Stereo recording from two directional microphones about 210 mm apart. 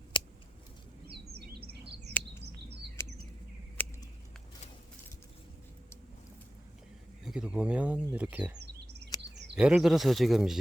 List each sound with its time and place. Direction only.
0.1 s scissors: 20° left (ahead or behind)
2.2 s chirp: 5° left (ahead or behind)
3.8 s a sound: 10° left (ahead or behind)
7.3 s speech: 5° right (ahead or behind)
9.6 s speech: 5° right (ahead or behind)